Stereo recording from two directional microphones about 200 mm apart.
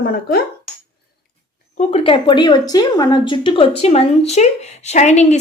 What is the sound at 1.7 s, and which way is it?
A woman's voice, 30° left (ahead or behind).